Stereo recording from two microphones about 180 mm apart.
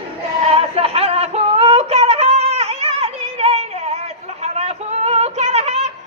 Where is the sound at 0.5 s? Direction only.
35° right (ahead or behind).